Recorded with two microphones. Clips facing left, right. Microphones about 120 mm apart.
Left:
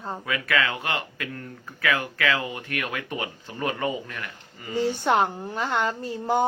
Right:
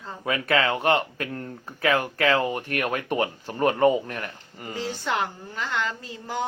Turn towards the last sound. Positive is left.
turn(degrees=55)  # may be behind; listen again after turning